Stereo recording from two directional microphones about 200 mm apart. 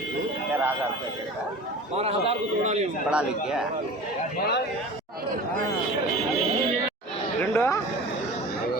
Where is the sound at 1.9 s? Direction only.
30° right (ahead or behind).